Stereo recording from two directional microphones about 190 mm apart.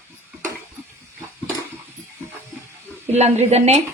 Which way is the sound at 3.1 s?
35° right (ahead or behind).